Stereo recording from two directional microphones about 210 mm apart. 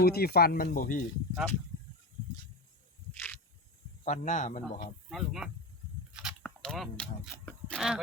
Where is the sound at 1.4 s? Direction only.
5° right (ahead or behind).